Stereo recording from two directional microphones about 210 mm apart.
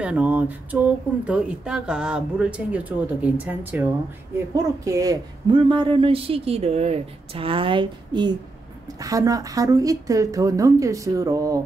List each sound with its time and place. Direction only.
0.0 s speech: 5° right (ahead or behind)